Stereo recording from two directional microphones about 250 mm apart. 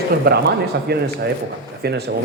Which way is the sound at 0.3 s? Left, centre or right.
Right.